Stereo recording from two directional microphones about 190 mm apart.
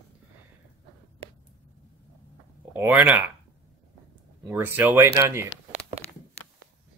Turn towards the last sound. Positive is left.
turn(degrees=-15)  # may be behind; listen again after turning